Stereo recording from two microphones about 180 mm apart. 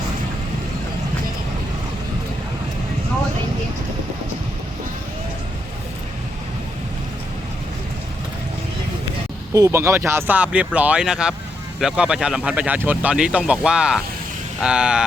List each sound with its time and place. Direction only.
9.5 s speech: 15° right (ahead or behind)